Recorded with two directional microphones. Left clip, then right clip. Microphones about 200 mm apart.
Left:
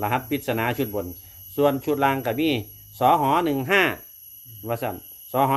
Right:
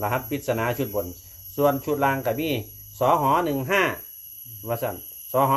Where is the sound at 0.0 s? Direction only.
45° left (ahead or behind).